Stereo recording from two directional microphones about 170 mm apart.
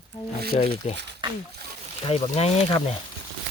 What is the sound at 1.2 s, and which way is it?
Speech, 30° right (ahead or behind).